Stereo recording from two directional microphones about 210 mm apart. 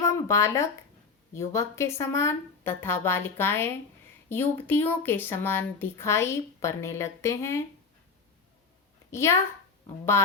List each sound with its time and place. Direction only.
0.0 s a woman's voice: 15° left (ahead or behind)
9.1 s a woman's voice: 15° left (ahead or behind)